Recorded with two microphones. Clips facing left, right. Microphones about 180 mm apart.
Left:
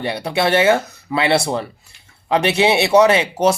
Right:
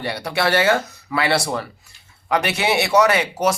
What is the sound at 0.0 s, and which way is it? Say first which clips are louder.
Speech: left 3 dB; 20° left (ahead or behind).